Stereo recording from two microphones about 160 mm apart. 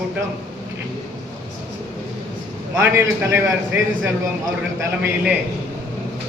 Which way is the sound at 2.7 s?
15° right (ahead or behind).